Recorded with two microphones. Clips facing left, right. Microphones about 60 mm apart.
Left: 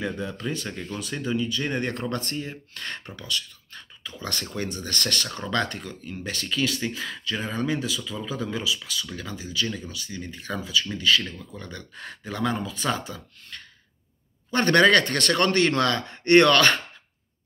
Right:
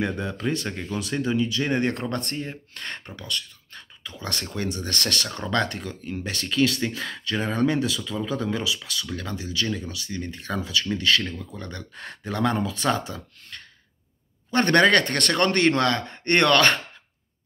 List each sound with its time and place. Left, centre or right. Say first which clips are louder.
0.7 s speech: right 3 dB; centre
1.1 s speech: right 3 dB; right
4.1 s speech: right 1 dB; right
14.5 s speech: even; right
15.3 s speech: right 1 dB; right